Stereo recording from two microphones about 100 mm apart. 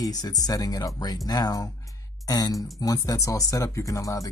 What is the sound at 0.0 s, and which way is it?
Speech, 40° left (ahead or behind).